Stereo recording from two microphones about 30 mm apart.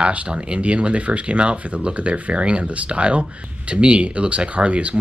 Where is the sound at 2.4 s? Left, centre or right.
Right.